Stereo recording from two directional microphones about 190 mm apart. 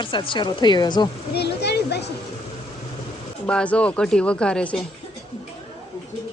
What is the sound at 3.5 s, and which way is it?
Speech, 5° left (ahead or behind).